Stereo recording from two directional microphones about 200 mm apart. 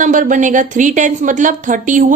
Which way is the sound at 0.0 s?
40° right (ahead or behind).